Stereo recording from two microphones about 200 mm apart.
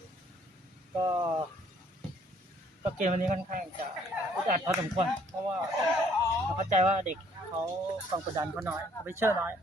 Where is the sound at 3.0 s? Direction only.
40° right (ahead or behind).